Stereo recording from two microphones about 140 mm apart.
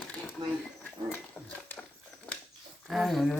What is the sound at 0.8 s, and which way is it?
Dog, 15° left (ahead or behind).